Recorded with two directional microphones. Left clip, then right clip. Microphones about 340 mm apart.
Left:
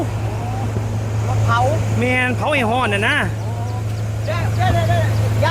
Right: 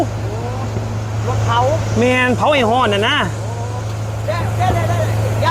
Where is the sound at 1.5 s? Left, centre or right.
Left.